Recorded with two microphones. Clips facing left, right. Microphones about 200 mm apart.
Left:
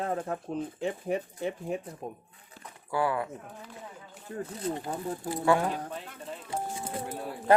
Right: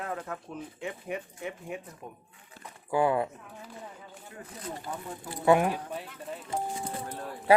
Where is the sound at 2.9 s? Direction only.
20° right (ahead or behind).